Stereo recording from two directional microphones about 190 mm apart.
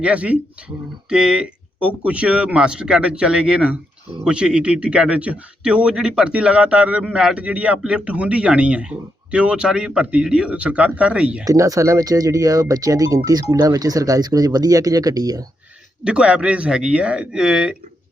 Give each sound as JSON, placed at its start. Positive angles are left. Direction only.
{"t": 0.0, "sound": "a man's voice", "side_deg": -5}
{"t": 11.4, "sound": "speech", "side_deg": -15}
{"t": 16.0, "sound": "a man's voice", "side_deg": -5}